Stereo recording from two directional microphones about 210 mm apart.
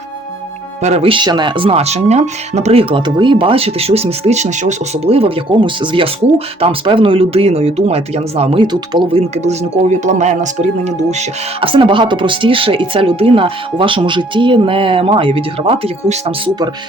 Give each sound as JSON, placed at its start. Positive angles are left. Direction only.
{"t": 0.8, "sound": "speech", "side_deg": -30}